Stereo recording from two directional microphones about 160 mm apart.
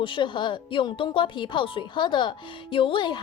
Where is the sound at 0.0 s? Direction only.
30° left (ahead or behind).